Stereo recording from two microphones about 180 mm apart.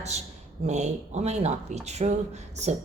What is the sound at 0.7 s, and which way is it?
A woman's voice, 40° right (ahead or behind).